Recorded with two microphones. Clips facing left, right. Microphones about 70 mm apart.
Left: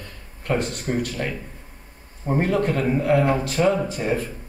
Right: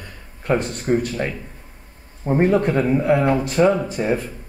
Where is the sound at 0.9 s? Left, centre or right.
Right.